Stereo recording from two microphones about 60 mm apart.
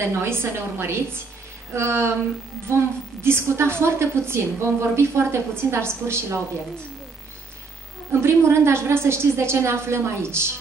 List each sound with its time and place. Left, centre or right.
0.2 s a woman's voice: right
8.1 s a woman's voice: right